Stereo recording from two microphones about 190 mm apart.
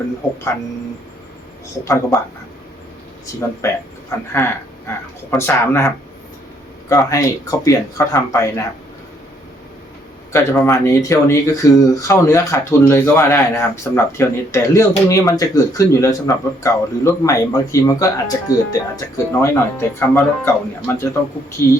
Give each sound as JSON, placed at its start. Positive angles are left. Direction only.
{"t": 1.8, "sound": "speech", "side_deg": 15}
{"t": 3.6, "sound": "speech", "side_deg": 15}
{"t": 10.3, "sound": "speech", "side_deg": 15}